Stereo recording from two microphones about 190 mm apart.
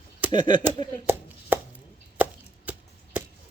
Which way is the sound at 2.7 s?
10° right (ahead or behind).